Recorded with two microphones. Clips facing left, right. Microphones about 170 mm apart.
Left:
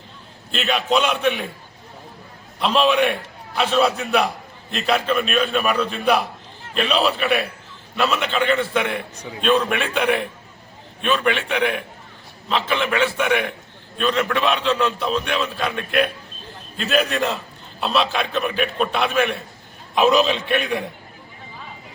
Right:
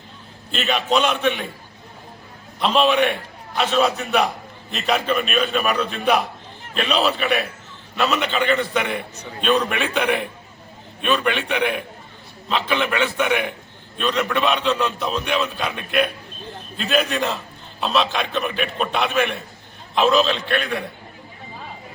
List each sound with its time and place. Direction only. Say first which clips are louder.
0.5 s a man's voice: even; 5° left (ahead or behind)
2.6 s a man's voice: even; centre (ahead or behind)
20.0 s a man's voice: left 1 dB; 15° left (ahead or behind)